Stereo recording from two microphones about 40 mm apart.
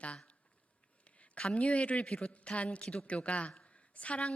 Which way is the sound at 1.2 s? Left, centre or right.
Left.